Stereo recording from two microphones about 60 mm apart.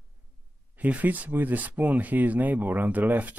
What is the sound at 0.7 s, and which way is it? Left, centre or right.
Speech, right.